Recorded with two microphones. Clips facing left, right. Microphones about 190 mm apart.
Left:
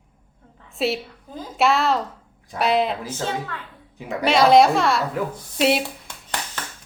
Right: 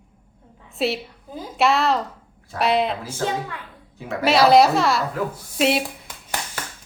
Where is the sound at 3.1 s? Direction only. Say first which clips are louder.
Right 2 dB; 10° right (ahead or behind).